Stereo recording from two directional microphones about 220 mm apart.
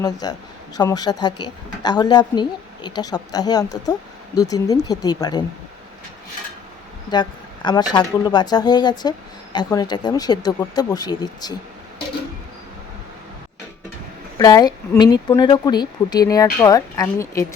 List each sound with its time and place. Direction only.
0.0 s a woman's voice: 15° left (ahead or behind)
7.1 s a woman's voice: 20° left (ahead or behind)
14.3 s a woman's voice: 20° left (ahead or behind)